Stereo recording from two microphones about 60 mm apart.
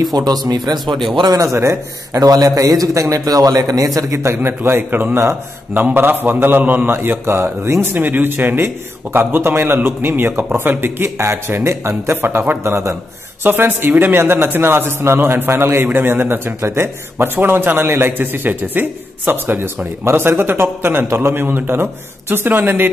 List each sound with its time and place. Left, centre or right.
0.0 s speech: right
1.3 s a man's voice: right
2.1 s a man's voice: right
4.4 s a man's voice: right
7.9 s a man's voice: right
16.6 s a man's voice: right
17.4 s a man's voice: right